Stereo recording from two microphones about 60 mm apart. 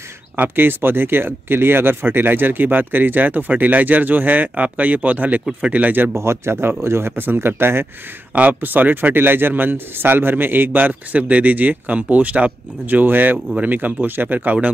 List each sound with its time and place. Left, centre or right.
0.4 s speech: right
6.1 s speech: right
13.0 s speech: right